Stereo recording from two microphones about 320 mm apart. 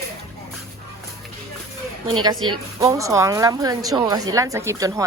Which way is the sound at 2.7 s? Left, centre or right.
Centre.